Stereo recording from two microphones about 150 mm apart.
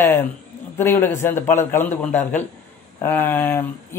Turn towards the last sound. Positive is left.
turn(degrees=15)  # may be behind; listen again after turning